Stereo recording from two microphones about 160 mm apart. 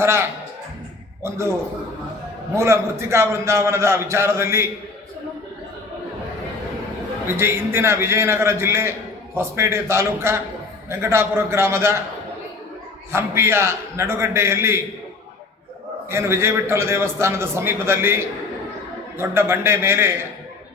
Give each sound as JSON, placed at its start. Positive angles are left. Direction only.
{"t": 0.0, "sound": "a man's voice", "side_deg": -15}
{"t": 2.6, "sound": "a man's voice", "side_deg": -15}
{"t": 7.3, "sound": "a man's voice", "side_deg": -15}
{"t": 13.1, "sound": "a man's voice", "side_deg": -15}
{"t": 16.0, "sound": "a man's voice", "side_deg": -15}